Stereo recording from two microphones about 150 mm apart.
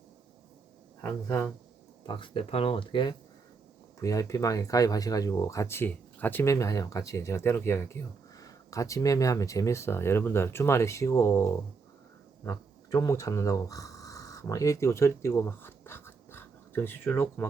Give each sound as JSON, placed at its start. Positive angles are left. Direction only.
{"t": 2.0, "sound": "speech", "side_deg": 35}